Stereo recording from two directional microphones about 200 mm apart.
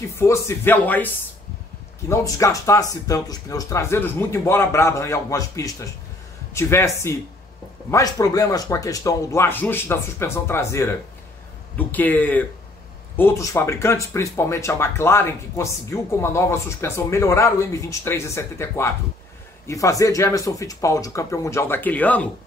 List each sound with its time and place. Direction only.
0.2 s speech: 15° left (ahead or behind)